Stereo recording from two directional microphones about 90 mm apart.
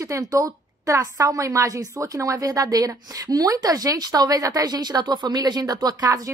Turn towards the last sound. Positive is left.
turn(degrees=-45)  # may be behind; listen again after turning